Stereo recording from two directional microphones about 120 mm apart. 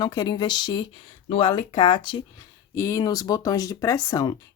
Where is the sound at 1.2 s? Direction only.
50° left (ahead or behind).